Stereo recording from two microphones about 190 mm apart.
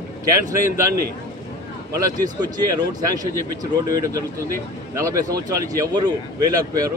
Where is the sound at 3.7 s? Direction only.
20° right (ahead or behind).